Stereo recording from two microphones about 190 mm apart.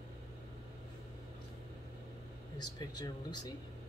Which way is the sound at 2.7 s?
20° left (ahead or behind).